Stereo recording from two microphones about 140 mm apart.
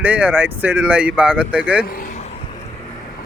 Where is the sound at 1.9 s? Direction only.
85° left.